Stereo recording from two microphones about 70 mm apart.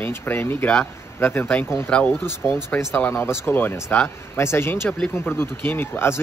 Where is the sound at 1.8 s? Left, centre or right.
Centre.